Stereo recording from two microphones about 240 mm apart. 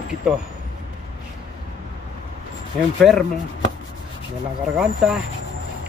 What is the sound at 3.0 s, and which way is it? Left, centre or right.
Speech, centre.